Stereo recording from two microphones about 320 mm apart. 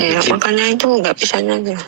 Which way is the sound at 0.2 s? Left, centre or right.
Right.